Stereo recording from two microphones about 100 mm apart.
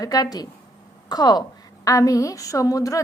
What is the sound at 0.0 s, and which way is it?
A woman's voice, 40° left (ahead or behind).